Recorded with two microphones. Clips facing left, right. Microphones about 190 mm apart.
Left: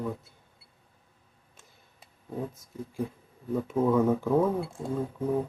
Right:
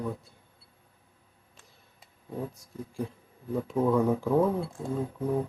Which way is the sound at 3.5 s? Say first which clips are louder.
Left 1 dB; centre (ahead or behind).